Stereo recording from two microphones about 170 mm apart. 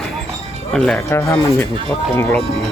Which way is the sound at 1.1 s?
15° left (ahead or behind).